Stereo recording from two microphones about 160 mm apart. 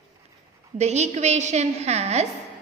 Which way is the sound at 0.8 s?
45° right (ahead or behind).